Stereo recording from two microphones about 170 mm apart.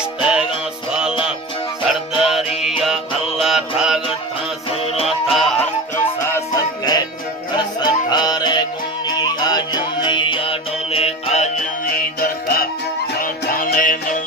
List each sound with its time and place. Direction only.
0.2 s music: 5° right (ahead or behind)
1.9 s music: 5° right (ahead or behind)
5.0 s music: centre (ahead or behind)
6.2 s music: 15° left (ahead or behind); by 11.5 s 40° left (ahead or behind)
11.8 s music: 60° left (ahead or behind)